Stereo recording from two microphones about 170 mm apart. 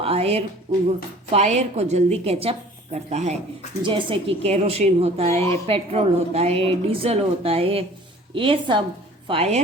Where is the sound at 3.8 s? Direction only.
30° right (ahead or behind).